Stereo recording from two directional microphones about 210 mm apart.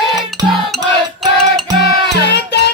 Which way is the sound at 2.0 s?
50° left (ahead or behind).